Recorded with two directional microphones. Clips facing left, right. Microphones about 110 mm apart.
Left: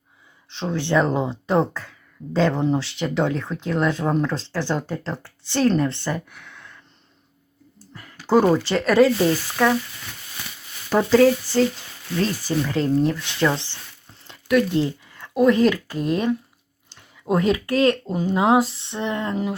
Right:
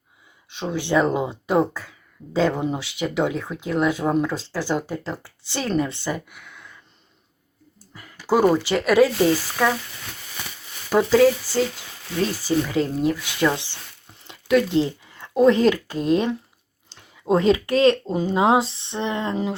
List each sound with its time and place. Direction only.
0.5 s speech: 10° right (ahead or behind)
7.9 s speech: 5° right (ahead or behind)
10.8 s speech: 5° right (ahead or behind); by 19.5 s 25° right (ahead or behind)